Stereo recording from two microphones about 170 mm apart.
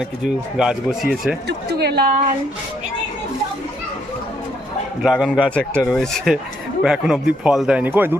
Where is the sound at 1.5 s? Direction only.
70° right (ahead or behind).